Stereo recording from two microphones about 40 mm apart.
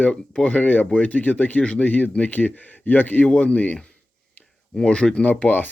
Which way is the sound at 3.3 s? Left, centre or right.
Left.